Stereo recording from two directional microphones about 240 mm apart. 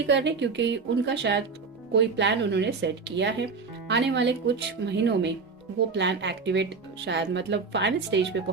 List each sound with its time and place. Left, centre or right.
0.0 s speech: right